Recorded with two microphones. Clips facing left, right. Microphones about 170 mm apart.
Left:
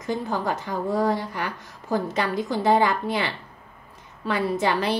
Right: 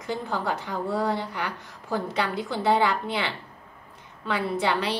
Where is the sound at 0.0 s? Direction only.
45° left (ahead or behind).